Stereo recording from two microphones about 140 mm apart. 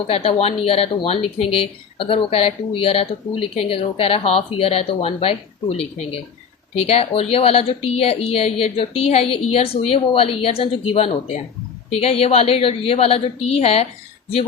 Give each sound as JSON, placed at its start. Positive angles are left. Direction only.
{"t": 0.1, "sound": "speech", "side_deg": 45}
{"t": 6.8, "sound": "speech", "side_deg": 45}